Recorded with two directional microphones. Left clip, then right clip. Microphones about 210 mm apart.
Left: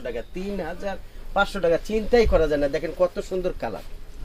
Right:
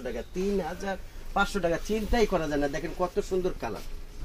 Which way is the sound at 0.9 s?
40° left (ahead or behind).